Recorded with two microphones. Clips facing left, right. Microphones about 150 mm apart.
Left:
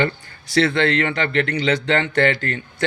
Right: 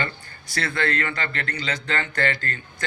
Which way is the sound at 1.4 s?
80° left.